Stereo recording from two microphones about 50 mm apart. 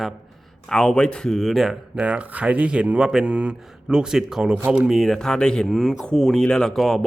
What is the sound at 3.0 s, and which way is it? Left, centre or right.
Speech, centre.